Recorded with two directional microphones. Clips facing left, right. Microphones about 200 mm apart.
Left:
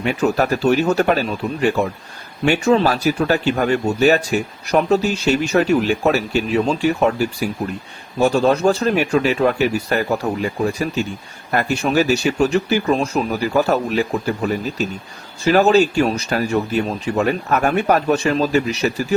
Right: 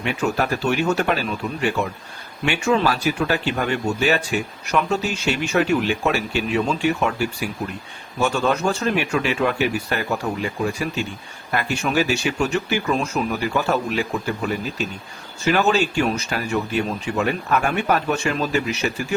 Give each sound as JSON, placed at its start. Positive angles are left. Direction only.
{"t": 0.0, "sound": "speech", "side_deg": 40}